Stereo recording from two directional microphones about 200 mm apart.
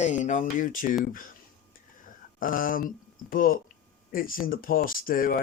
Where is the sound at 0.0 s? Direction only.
35° left (ahead or behind).